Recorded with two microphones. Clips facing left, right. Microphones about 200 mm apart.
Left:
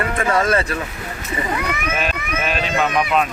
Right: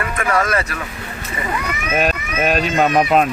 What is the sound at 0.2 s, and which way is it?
Speech, 25° left (ahead or behind).